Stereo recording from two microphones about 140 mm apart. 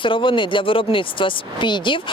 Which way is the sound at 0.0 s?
35° left (ahead or behind).